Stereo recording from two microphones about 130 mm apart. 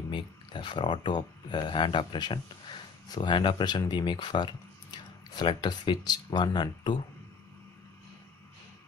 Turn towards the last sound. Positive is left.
turn(degrees=35)  # may be behind; listen again after turning